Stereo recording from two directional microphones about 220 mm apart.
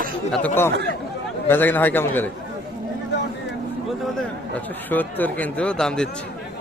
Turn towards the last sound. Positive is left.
turn(degrees=5)  # may be behind; listen again after turning